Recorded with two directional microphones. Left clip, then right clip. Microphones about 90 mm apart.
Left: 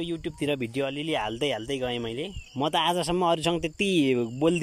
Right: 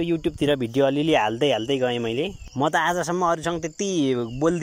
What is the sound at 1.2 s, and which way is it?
Speech, 10° right (ahead or behind).